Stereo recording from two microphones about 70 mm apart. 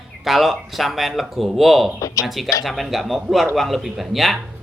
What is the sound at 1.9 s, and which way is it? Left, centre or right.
Speech, left.